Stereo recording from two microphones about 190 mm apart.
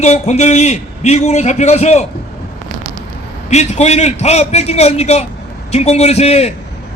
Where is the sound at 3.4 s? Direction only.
35° left (ahead or behind).